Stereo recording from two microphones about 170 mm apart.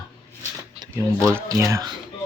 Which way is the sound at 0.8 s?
15° right (ahead or behind).